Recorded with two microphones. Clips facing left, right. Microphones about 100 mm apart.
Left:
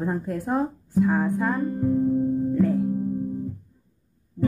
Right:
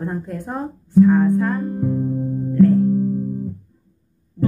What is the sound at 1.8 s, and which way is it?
Music, 10° right (ahead or behind).